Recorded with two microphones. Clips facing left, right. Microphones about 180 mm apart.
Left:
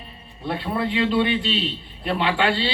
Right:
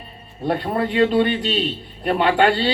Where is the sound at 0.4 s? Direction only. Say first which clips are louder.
Right 4 dB; 45° right (ahead or behind).